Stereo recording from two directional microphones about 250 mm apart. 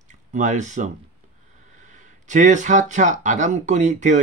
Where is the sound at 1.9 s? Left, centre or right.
Right.